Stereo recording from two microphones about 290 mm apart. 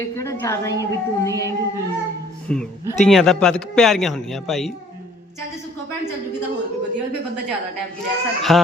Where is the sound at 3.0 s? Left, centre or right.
Centre.